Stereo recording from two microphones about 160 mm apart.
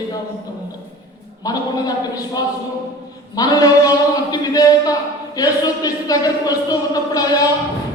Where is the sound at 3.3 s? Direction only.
25° left (ahead or behind).